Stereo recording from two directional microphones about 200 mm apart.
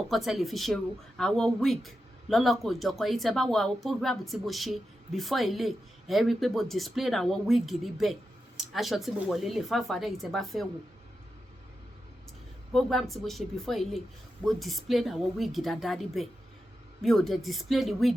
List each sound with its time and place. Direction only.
0.1 s speech: centre (ahead or behind)
12.7 s speech: centre (ahead or behind)